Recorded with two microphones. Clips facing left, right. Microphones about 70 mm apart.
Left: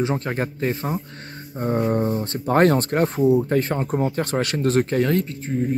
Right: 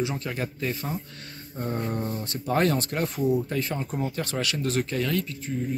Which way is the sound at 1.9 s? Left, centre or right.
Left.